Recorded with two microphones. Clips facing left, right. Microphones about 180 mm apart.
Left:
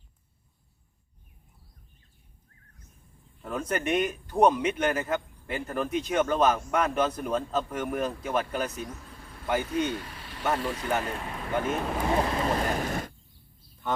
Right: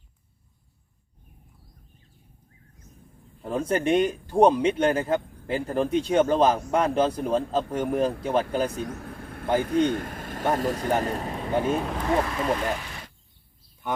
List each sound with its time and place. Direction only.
3.4 s speech: 30° right (ahead or behind)
8.8 s vehicle: 65° right (ahead or behind)
9.6 s speech: 55° right (ahead or behind); by 11.7 s 35° right (ahead or behind)
11.8 s speech: centre (ahead or behind)
12.2 s speech: 35° left (ahead or behind)
13.8 s speech: 10° right (ahead or behind)